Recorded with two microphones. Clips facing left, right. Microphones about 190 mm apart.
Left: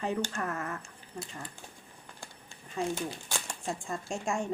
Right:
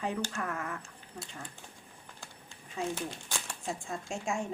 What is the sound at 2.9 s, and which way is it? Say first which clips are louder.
Speech: left 2 dB; 10° left (ahead or behind).